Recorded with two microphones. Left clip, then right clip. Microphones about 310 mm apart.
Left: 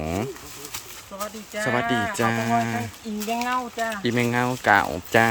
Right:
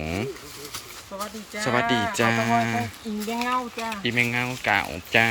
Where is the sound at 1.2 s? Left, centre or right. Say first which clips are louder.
Left 2 dB; centre.